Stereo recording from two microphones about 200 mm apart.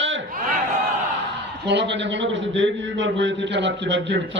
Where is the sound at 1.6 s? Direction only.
60° right (ahead or behind).